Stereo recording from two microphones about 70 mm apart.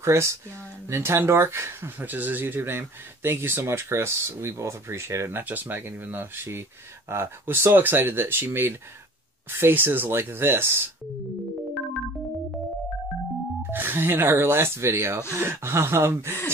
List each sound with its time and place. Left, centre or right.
0.0 s speech: right
13.7 s speech: right